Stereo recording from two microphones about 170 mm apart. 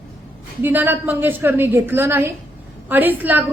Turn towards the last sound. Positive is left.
turn(degrees=-10)  # may be behind; listen again after turning